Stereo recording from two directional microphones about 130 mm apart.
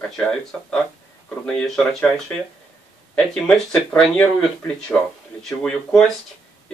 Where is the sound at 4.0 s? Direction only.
10° left (ahead or behind).